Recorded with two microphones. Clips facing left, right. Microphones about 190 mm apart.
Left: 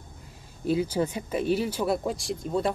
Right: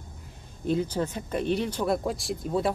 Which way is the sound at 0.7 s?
10° left (ahead or behind).